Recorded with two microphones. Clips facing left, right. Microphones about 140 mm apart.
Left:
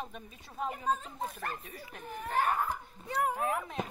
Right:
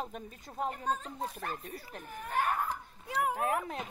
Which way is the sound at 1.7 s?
35° right (ahead or behind).